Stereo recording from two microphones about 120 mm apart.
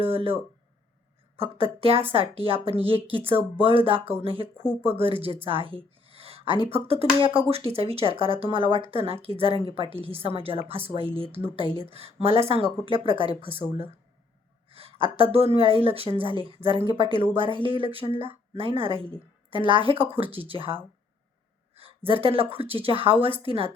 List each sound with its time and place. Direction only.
0.0 s speech: 50° right (ahead or behind)
1.4 s speech: 50° right (ahead or behind)
14.7 s a sound: 50° right (ahead or behind)
15.1 s speech: 55° right (ahead or behind)
21.8 s speech: 50° right (ahead or behind)